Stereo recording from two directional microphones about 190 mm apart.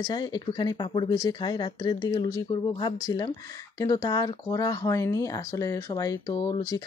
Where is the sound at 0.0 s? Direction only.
20° left (ahead or behind).